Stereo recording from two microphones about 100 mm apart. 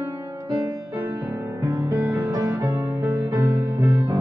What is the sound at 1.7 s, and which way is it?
Music, 20° right (ahead or behind).